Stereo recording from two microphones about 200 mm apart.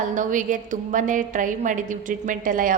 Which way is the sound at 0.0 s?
40° right (ahead or behind).